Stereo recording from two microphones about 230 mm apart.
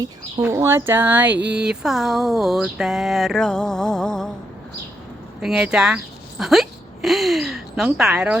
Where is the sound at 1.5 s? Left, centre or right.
Centre.